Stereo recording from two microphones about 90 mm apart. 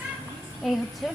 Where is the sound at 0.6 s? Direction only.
Centre (ahead or behind).